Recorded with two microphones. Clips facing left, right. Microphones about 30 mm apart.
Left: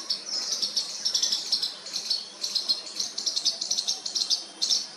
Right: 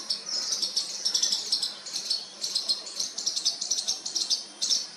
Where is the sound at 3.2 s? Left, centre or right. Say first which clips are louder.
Left 2 dB; centre.